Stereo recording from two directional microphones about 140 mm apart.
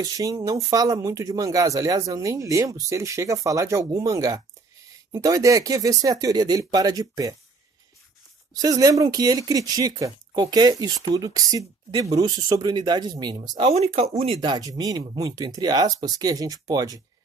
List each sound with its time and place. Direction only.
0.0 s speech: 25° right (ahead or behind)
8.5 s speech: 25° right (ahead or behind)
13.7 s speech: 45° right (ahead or behind); by 17.0 s 25° right (ahead or behind)